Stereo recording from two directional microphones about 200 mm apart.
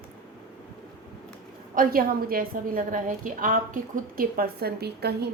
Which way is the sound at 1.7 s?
45° right (ahead or behind).